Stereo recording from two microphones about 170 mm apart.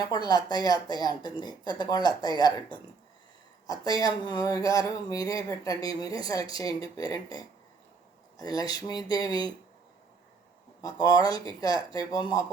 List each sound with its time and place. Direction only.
0.0 s speech: 25° left (ahead or behind)
10.8 s speech: 20° left (ahead or behind)